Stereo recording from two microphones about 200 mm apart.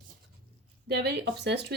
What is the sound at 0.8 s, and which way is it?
Speech, 55° right (ahead or behind).